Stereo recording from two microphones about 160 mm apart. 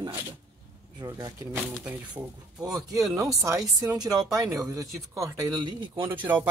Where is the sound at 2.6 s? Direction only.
25° right (ahead or behind).